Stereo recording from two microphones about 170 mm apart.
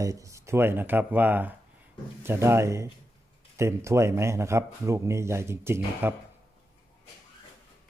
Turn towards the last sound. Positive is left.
turn(degrees=-15)  # may be behind; listen again after turning